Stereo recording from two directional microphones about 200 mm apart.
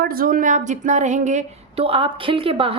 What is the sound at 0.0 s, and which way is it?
A woman's voice, 45° right (ahead or behind).